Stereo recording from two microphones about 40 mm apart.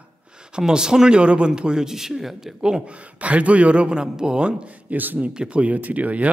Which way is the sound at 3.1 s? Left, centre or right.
Right.